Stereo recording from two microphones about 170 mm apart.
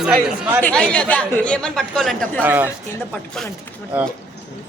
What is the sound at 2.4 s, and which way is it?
Speech, 10° right (ahead or behind).